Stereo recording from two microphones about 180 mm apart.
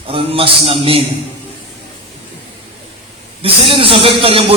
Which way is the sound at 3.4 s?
30° right (ahead or behind).